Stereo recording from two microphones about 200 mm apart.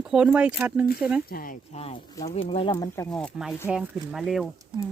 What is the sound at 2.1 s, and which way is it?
Speech, 20° left (ahead or behind).